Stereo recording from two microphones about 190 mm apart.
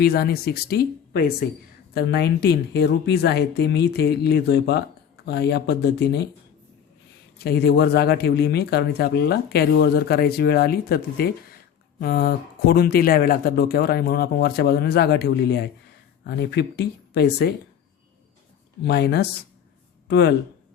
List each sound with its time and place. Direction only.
0.0 s speech: 55° left (ahead or behind)
7.3 s speech: 60° left (ahead or behind)
18.9 s speech: 60° left (ahead or behind)